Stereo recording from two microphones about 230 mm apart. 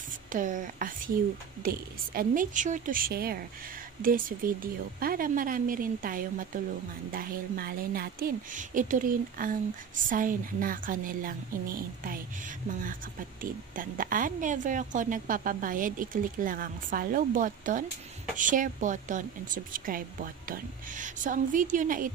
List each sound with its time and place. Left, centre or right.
0.3 s a woman's voice: right
13.4 s speech: right